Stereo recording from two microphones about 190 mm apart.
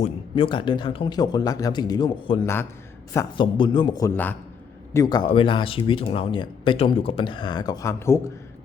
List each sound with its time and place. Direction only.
0.0 s speech: 25° left (ahead or behind)